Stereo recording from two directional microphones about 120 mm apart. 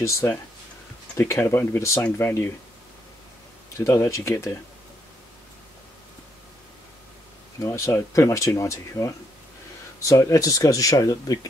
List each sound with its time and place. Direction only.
0.0 s speech: 25° left (ahead or behind)
3.7 s speech: 25° left (ahead or behind)
7.6 s speech: 25° left (ahead or behind)